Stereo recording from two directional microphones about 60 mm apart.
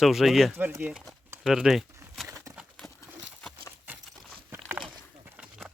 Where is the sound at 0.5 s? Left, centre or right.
Right.